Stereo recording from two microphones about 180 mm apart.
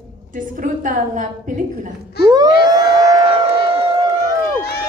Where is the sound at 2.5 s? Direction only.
60° left (ahead or behind).